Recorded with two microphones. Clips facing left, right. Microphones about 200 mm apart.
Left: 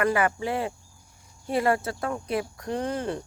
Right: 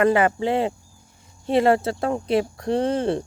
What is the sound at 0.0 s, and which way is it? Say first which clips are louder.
Speech: right 6 dB; 25° right (ahead or behind).